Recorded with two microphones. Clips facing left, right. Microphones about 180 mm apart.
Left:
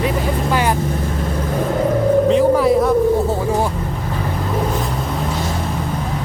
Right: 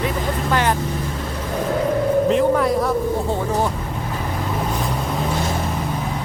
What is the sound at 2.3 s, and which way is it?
Music, centre (ahead or behind).